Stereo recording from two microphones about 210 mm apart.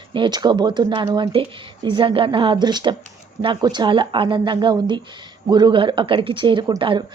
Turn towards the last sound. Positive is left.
turn(degrees=-20)  # may be behind; listen again after turning